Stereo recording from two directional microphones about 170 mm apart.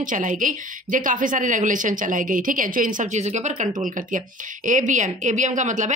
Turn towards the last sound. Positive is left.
turn(degrees=-45)  # may be behind; listen again after turning